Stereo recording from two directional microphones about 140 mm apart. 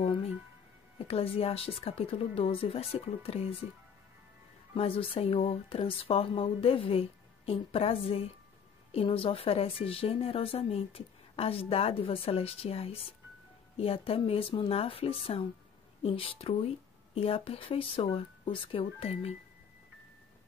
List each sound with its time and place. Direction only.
0.0 s speech: 45° left (ahead or behind)
4.7 s a woman's voice: 45° left (ahead or behind)